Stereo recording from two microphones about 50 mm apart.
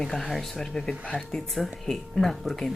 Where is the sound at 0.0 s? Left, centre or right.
Centre.